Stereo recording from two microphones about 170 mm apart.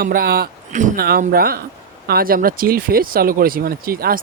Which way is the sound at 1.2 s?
60° right (ahead or behind).